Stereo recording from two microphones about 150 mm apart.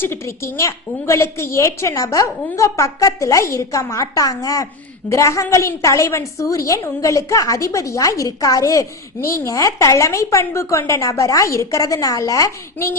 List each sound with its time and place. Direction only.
0.0 s a woman's voice: 15° left (ahead or behind)